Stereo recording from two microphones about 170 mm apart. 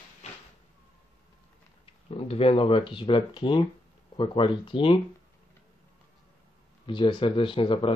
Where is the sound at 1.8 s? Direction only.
35° left (ahead or behind).